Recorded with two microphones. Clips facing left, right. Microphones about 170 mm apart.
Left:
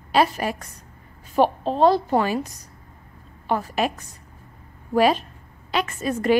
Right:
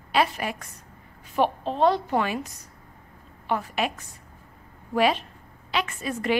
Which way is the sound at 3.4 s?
40° left (ahead or behind).